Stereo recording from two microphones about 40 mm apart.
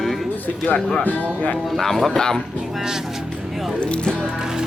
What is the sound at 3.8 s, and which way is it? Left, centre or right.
Speech, left.